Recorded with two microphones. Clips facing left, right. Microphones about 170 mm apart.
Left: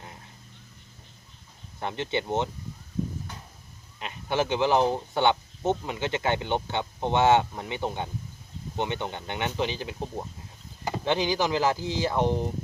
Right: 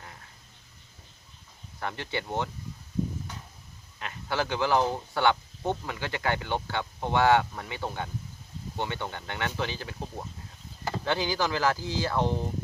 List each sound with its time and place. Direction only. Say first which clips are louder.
1.8 s speech: left 4 dB; 20° left (ahead or behind)
4.0 s speech: left 3 dB; 20° left (ahead or behind)